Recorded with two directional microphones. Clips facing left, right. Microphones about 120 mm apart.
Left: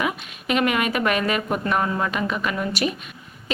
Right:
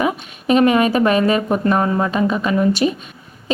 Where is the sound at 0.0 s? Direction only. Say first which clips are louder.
Right 6 dB; 35° right (ahead or behind).